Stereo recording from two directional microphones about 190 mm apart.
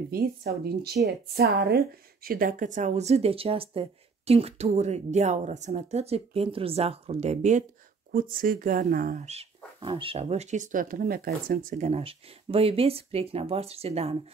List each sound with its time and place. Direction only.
0.1 s speech: 55° right (ahead or behind); by 14.1 s 30° right (ahead or behind)